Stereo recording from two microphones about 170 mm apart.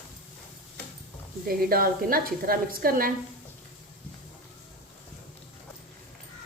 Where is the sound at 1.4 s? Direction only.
60° right (ahead or behind).